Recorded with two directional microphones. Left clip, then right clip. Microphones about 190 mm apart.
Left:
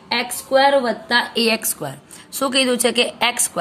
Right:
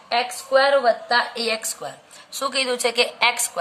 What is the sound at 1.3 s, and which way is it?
A woman's voice, 25° left (ahead or behind).